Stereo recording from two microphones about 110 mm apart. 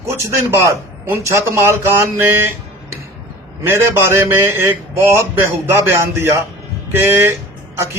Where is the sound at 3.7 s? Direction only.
20° right (ahead or behind).